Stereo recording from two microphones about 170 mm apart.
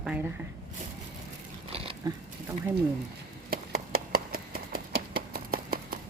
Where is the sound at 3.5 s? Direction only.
60° right (ahead or behind).